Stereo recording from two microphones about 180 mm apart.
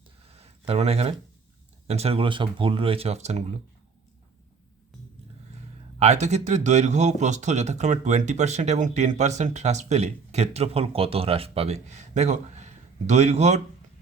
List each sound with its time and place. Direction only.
0.3 s a sound: 35° right (ahead or behind)
1.9 s speech: 35° right (ahead or behind)
6.0 s speech: 40° right (ahead or behind)